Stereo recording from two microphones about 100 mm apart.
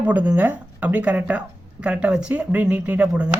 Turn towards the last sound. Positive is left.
turn(degrees=-15)  # may be behind; listen again after turning